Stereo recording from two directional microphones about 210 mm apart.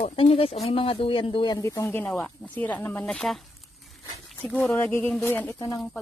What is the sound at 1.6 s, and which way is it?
Speech, 15° left (ahead or behind).